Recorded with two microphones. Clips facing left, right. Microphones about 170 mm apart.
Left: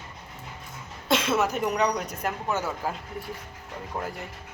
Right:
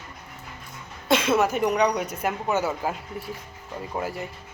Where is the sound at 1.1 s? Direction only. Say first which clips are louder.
Right 3 dB; centre (ahead or behind).